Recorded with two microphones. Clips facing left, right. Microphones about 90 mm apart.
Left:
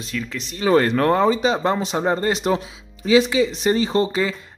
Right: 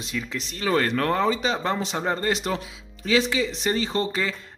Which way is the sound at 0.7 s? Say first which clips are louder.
Left 6 dB; 30° left (ahead or behind).